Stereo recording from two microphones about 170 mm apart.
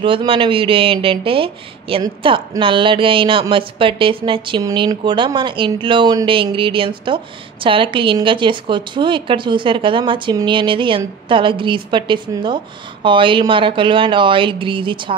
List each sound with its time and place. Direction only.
0.0 s speech: 30° right (ahead or behind)